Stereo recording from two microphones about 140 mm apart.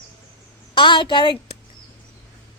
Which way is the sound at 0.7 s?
35° left (ahead or behind).